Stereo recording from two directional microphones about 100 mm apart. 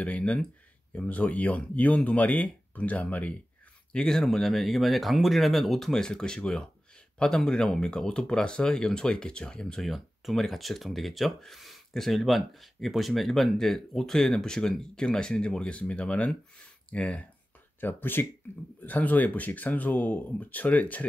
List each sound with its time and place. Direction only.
0.0 s speech: 15° left (ahead or behind)